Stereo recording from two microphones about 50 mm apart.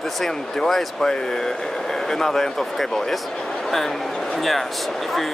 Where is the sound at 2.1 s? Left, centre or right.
Centre.